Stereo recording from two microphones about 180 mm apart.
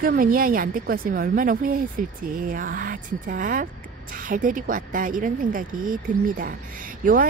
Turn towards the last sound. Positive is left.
turn(degrees=-50)  # may be behind; listen again after turning